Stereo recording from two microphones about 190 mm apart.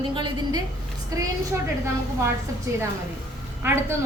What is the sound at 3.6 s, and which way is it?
Speech, 15° right (ahead or behind).